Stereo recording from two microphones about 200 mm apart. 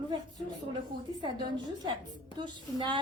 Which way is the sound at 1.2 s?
25° right (ahead or behind).